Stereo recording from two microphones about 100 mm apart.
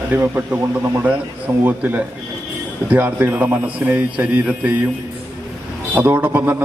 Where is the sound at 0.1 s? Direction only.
20° right (ahead or behind).